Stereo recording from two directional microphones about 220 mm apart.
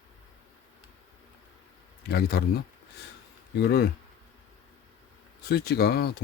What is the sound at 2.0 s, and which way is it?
Speech, 45° left (ahead or behind).